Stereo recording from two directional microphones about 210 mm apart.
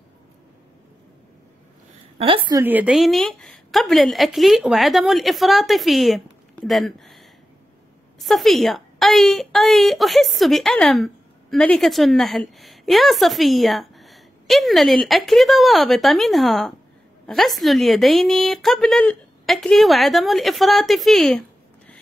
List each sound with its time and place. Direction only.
2.1 s a woman's voice: 25° right (ahead or behind)
2.6 s a woman's voice: 10° right (ahead or behind)